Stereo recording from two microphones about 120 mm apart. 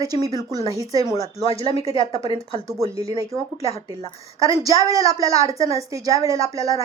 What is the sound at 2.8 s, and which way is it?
Speech, 50° left (ahead or behind).